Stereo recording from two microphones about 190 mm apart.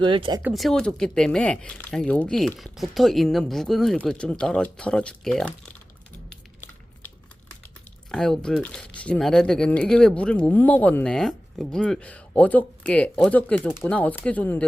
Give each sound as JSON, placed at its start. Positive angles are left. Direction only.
{"t": 0.0, "sound": "speech", "side_deg": -25}
{"t": 0.4, "sound": "speech", "side_deg": 0}
{"t": 8.1, "sound": "speech", "side_deg": 5}